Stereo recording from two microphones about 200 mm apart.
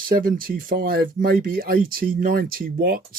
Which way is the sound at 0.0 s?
45° right (ahead or behind).